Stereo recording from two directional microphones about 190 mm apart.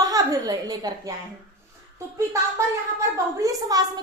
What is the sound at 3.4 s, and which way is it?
Speech, 15° right (ahead or behind).